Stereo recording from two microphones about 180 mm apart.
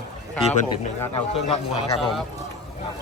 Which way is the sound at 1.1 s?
35° left (ahead or behind).